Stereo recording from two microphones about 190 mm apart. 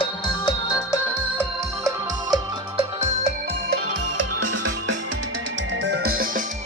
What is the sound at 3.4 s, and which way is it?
Music, 65° right (ahead or behind).